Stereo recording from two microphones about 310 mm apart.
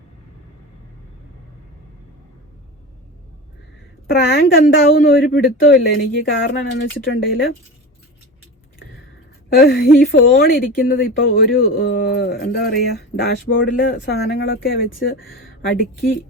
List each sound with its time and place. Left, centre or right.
4.1 s speech: left
9.6 s speech: left